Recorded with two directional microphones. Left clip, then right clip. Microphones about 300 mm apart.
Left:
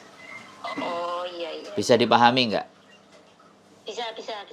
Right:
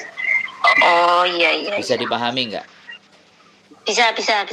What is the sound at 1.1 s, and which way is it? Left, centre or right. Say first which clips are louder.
Speech: right 16 dB; right.